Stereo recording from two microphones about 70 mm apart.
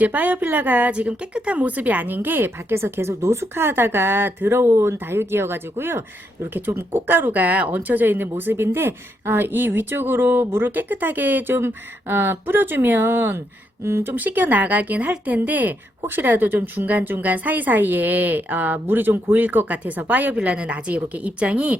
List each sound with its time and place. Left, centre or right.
0.0 s a woman's voice: right
14.1 s speech: right